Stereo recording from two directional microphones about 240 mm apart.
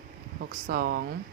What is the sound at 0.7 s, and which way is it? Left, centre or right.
Speech, right.